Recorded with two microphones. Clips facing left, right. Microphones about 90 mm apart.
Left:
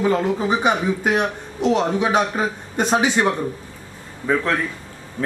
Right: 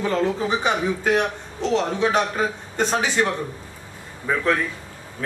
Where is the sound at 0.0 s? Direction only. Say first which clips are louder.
Left 3 dB; 15° left (ahead or behind).